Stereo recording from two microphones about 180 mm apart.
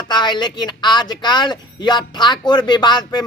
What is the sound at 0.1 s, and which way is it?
Speech, 25° left (ahead or behind).